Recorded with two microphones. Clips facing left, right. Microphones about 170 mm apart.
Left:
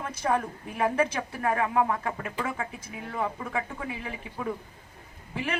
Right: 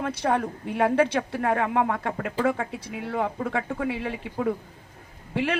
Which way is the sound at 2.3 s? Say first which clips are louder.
Right 7 dB; 35° right (ahead or behind).